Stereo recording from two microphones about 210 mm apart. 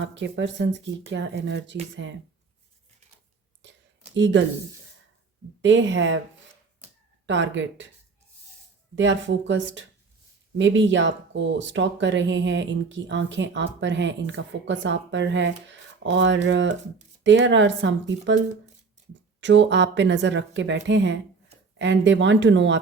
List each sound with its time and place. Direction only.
0.0 s speech: 60° right (ahead or behind)
4.1 s speech: 60° right (ahead or behind)
5.6 s speech: 60° right (ahead or behind)
7.3 s speech: 60° right (ahead or behind)
9.0 s speech: 60° right (ahead or behind)
19.4 s speech: 60° right (ahead or behind)